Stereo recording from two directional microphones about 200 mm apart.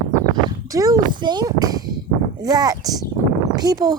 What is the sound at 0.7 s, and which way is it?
Speech, 15° right (ahead or behind).